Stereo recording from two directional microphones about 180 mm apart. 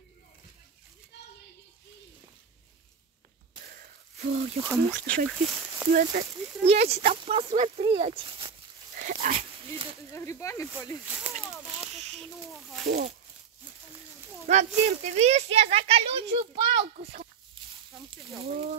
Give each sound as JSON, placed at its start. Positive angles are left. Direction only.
{"t": 4.6, "sound": "speech", "side_deg": 5}
{"t": 5.4, "sound": "a sound", "side_deg": -5}
{"t": 5.9, "sound": "speech", "side_deg": -55}
{"t": 6.6, "sound": "speech", "side_deg": -35}
{"t": 8.9, "sound": "dog", "side_deg": -50}
{"t": 10.1, "sound": "speech", "side_deg": 15}
{"t": 11.2, "sound": "a sound", "side_deg": -5}
{"t": 12.8, "sound": "speech", "side_deg": -60}
{"t": 14.5, "sound": "speech", "side_deg": -40}
{"t": 18.4, "sound": "speech", "side_deg": -35}